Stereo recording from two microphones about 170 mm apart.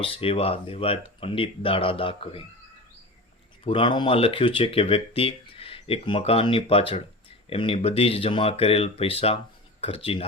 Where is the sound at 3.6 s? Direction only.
30° left (ahead or behind).